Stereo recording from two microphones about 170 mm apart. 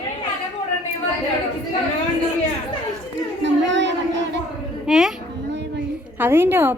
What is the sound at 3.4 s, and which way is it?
Chatter, 90° right.